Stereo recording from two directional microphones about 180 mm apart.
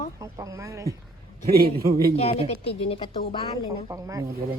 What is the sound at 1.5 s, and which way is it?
Speech, 60° right (ahead or behind).